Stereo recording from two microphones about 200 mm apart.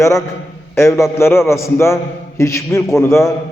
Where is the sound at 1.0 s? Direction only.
10° left (ahead or behind).